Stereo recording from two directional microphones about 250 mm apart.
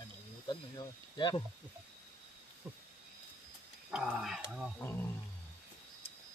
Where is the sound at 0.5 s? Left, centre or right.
Centre.